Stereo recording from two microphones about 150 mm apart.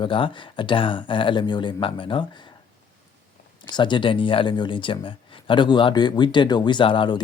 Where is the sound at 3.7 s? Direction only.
30° left (ahead or behind).